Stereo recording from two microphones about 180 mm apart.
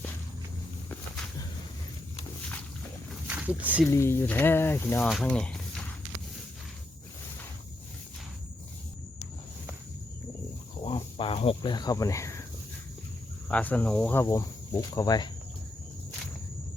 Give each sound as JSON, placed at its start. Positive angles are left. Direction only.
{"t": 3.2, "sound": "a sound", "side_deg": -10}
{"t": 3.8, "sound": "speech", "side_deg": 15}
{"t": 10.8, "sound": "speech", "side_deg": 30}
{"t": 13.5, "sound": "speech", "side_deg": 10}